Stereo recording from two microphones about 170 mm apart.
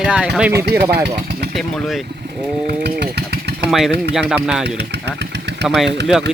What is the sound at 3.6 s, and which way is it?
Speech, centre (ahead or behind).